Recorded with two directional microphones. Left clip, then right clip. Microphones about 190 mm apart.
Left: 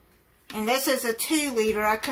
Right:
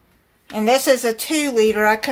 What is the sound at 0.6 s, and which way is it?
A woman's voice, 55° right (ahead or behind).